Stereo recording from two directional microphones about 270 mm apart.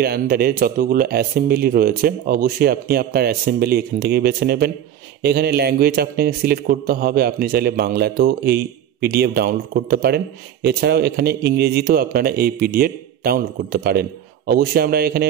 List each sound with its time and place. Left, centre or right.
0.0 s a man's voice: right